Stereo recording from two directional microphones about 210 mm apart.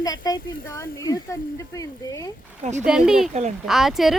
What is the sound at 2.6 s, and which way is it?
Speech, 35° right (ahead or behind).